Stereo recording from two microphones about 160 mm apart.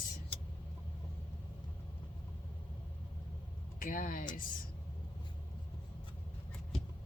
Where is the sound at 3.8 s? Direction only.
60° left (ahead or behind).